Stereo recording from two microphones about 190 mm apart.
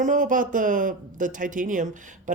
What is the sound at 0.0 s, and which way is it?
Speech, 45° right (ahead or behind).